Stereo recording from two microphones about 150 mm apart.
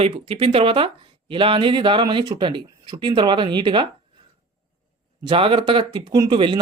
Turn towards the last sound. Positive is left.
turn(degrees=-30)  # may be behind; listen again after turning